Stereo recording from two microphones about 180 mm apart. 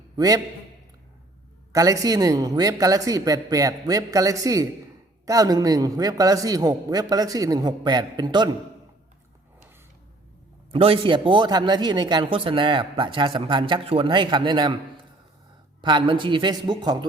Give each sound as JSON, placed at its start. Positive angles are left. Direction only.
{"t": 0.2, "sound": "speech", "side_deg": -20}
{"t": 1.7, "sound": "speech", "side_deg": -20}
{"t": 10.7, "sound": "speech", "side_deg": -30}
{"t": 15.8, "sound": "speech", "side_deg": -25}